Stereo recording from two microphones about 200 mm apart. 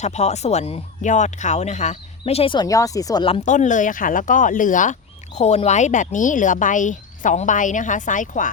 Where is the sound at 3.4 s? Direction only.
40° left (ahead or behind).